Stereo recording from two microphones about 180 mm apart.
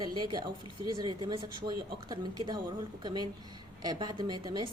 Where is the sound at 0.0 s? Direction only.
25° right (ahead or behind).